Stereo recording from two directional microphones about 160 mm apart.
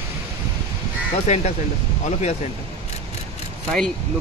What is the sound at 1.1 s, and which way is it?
Speech, 45° left (ahead or behind).